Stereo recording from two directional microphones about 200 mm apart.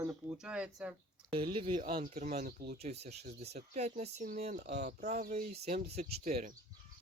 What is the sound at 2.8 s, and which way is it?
Speech, 35° right (ahead or behind).